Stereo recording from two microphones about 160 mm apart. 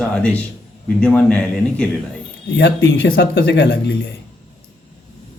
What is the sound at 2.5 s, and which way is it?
Speech, 90° left.